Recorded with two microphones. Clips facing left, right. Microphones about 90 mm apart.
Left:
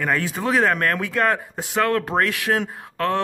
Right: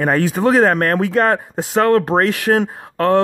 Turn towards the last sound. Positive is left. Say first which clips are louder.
# right 8 dB
turn(degrees=-40)  # may be behind; listen again after turning